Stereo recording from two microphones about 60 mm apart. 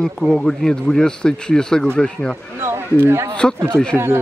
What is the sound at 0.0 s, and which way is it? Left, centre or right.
A man's voice, centre.